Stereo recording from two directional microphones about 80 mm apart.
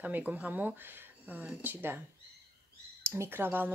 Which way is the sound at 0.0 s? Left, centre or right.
Centre.